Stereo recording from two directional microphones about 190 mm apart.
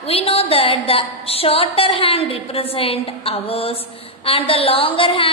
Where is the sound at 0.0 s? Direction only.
30° left (ahead or behind).